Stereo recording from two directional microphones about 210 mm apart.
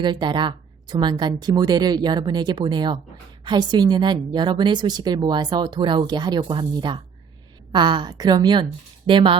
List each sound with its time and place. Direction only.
0.0 s a woman's voice: 20° right (ahead or behind)